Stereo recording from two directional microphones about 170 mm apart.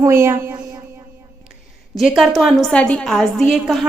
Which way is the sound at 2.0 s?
Centre (ahead or behind).